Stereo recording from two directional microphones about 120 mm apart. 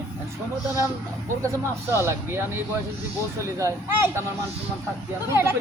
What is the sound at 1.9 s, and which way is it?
Speech, 20° right (ahead or behind).